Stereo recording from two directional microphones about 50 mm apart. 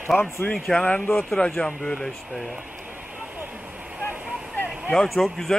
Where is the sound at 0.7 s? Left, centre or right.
Left.